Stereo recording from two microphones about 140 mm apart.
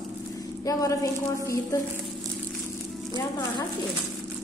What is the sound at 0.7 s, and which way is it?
Speech, 25° left (ahead or behind).